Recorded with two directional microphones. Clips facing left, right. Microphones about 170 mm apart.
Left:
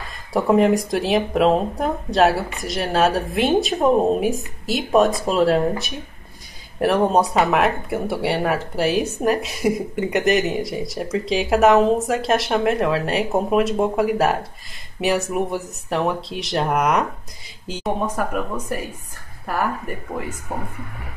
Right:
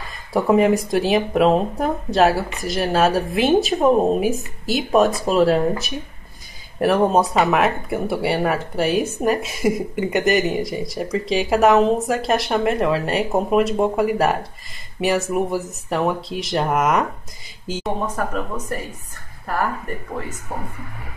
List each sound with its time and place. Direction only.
0.0 s speech: centre (ahead or behind)
18.0 s speech: 10° left (ahead or behind)